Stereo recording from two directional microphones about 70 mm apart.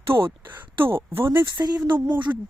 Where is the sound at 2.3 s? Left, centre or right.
Right.